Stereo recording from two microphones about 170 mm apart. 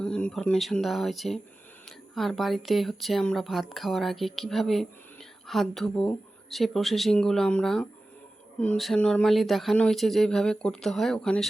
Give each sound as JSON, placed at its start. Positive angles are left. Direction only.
{"t": 0.0, "sound": "speech", "side_deg": 5}